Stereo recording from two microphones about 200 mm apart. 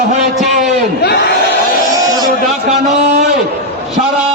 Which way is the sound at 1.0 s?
55° left (ahead or behind).